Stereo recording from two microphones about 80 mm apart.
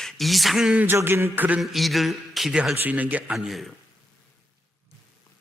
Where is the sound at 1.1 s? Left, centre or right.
Right.